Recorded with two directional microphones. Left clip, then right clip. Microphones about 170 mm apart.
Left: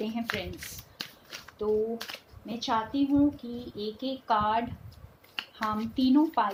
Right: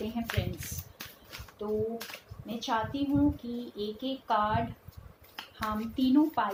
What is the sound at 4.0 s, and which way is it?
A woman's voice, 45° left (ahead or behind).